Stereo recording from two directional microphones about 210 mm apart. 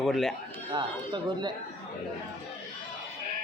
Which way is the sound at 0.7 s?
20° right (ahead or behind).